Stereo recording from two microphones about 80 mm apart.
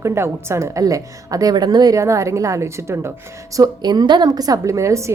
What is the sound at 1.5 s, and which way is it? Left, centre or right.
Speech, right.